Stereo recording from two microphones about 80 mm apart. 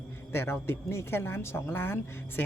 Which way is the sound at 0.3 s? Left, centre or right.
Left.